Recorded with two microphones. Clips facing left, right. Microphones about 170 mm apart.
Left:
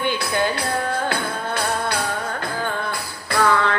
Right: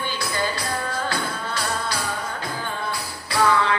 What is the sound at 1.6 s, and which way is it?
Music, 55° left (ahead or behind).